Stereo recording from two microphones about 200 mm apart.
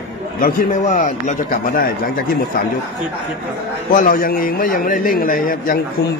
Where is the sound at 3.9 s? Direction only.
45° left (ahead or behind).